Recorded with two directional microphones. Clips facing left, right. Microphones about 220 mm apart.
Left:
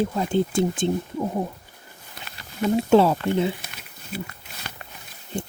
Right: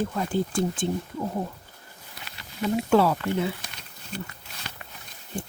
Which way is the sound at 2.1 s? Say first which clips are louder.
Left 3 dB; 50° left (ahead or behind).